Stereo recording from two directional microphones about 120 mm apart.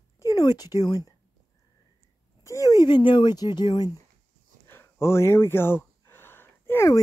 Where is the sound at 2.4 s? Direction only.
25° left (ahead or behind).